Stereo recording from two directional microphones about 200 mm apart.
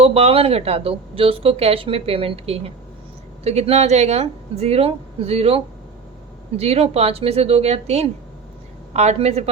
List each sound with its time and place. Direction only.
0.0 s speech: 30° right (ahead or behind)